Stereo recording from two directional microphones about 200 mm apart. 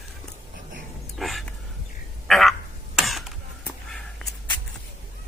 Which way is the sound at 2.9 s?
Centre (ahead or behind).